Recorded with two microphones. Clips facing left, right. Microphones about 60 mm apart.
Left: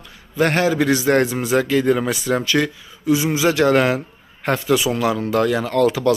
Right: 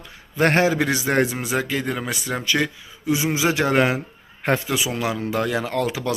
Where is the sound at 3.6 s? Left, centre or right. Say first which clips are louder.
Left 4 dB; centre.